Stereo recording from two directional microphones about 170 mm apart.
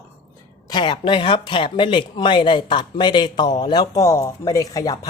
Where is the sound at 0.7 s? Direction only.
25° left (ahead or behind).